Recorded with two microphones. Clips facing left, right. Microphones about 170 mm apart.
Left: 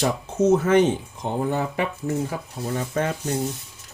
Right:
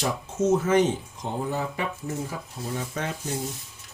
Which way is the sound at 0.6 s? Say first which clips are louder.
Left 3 dB; 60° left (ahead or behind).